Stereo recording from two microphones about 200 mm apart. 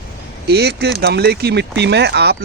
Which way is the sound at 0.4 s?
55° right (ahead or behind).